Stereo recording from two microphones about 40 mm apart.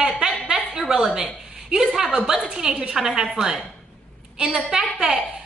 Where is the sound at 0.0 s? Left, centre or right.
Centre.